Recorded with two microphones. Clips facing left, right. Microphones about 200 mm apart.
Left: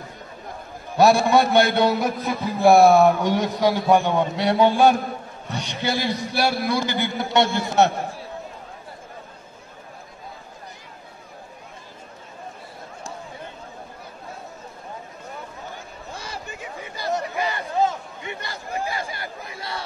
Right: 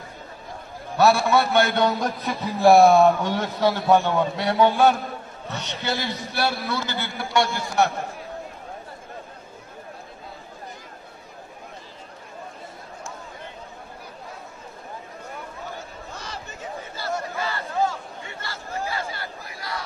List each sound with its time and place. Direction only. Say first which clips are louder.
0.9 s a man's voice: left 2 dB; 15° left (ahead or behind); by 2.9 s centre (ahead or behind)
3.0 s a man's voice: left 1 dB; 15° left (ahead or behind)
16.2 s a sound: left 2 dB; 10° left (ahead or behind)